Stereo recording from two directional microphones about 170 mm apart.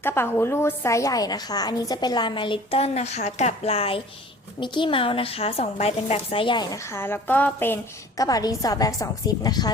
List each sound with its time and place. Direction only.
0.0 s a woman's voice: 15° left (ahead or behind)